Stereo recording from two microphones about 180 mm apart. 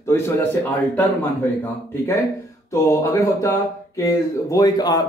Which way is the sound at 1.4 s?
10° left (ahead or behind).